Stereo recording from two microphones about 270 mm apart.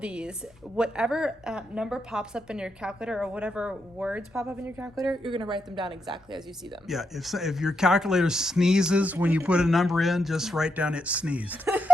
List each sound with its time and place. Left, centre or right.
0.0 s speech: centre
5.2 s a woman's voice: centre
6.8 s speech: centre